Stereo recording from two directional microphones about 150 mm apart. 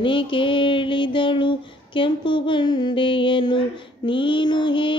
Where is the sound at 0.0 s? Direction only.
35° left (ahead or behind).